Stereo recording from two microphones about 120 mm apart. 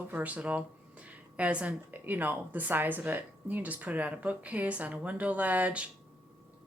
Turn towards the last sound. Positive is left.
turn(degrees=-10)  # may be behind; listen again after turning